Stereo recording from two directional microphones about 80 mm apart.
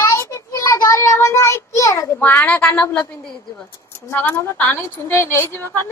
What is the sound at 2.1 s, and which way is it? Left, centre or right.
Speech, left.